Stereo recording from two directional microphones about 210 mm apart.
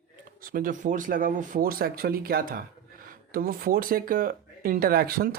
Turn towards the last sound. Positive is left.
turn(degrees=-45)  # may be behind; listen again after turning